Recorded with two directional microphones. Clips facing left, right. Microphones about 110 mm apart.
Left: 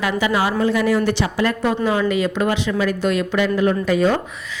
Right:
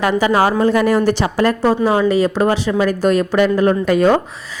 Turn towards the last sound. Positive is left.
turn(degrees=-50)  # may be behind; listen again after turning